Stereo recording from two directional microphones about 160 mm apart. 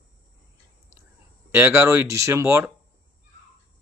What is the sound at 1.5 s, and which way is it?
Speech, 15° right (ahead or behind).